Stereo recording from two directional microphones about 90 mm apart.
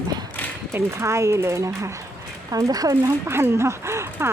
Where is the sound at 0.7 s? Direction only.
30° right (ahead or behind).